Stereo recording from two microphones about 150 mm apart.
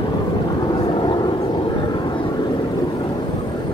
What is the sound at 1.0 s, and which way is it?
Vehicle, 30° left (ahead or behind).